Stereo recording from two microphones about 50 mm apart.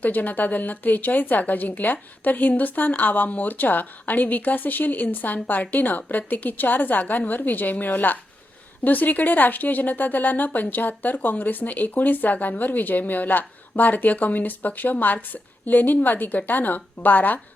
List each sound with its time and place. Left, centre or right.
0.0 s a woman's voice: left